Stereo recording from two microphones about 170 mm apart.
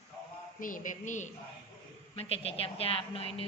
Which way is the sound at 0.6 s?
50° left (ahead or behind).